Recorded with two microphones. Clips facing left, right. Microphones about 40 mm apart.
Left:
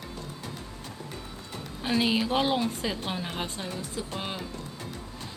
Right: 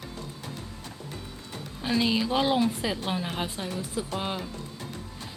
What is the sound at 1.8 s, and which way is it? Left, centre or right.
Speech, centre.